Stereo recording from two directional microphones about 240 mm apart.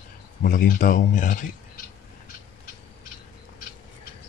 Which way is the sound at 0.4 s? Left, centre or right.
Left.